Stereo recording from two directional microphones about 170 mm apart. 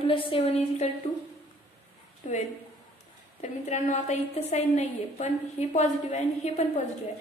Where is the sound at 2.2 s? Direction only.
45° left (ahead or behind).